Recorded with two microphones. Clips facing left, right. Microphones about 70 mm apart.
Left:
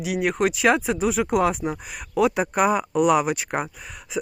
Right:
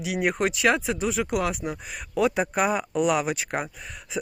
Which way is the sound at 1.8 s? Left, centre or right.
Centre.